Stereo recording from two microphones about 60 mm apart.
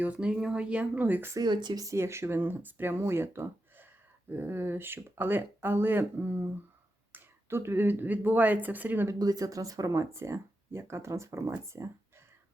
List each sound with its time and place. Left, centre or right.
0.0 s speech: centre
1.4 s speech: right
2.0 s speech: right
7.5 s speech: right
9.1 s speech: right